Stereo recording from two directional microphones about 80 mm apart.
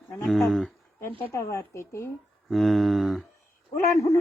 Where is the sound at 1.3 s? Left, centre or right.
Left.